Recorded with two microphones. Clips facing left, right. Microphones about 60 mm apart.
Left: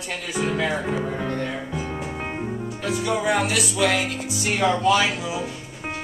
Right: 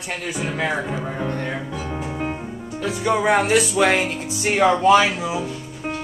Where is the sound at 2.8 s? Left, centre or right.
Right.